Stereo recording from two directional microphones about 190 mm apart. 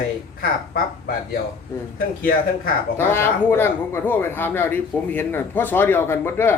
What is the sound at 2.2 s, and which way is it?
Speech, 50° left (ahead or behind).